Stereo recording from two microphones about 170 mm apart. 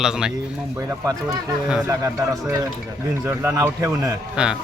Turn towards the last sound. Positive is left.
turn(degrees=-5)  # may be behind; listen again after turning